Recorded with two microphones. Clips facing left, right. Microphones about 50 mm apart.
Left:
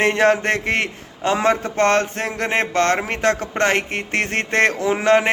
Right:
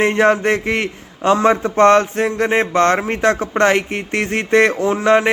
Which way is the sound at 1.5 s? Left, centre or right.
Right.